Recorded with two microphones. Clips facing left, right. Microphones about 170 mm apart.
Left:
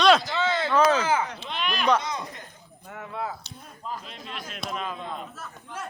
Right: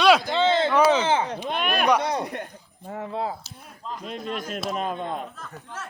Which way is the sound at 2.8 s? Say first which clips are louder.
Right 5 dB; 30° right (ahead or behind).